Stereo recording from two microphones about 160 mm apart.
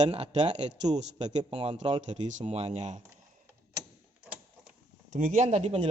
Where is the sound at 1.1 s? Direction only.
25° right (ahead or behind).